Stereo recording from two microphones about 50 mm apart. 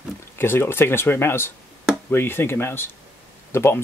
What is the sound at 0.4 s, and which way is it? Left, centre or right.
Speech, left.